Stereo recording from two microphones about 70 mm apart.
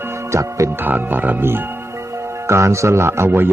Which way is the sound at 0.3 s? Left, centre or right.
Right.